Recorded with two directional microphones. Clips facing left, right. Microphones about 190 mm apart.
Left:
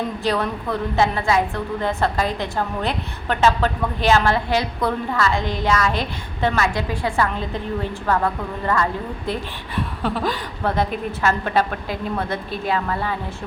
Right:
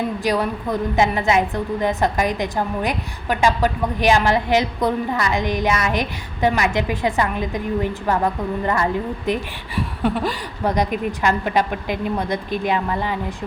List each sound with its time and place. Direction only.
0.2 s a woman's voice: 15° right (ahead or behind)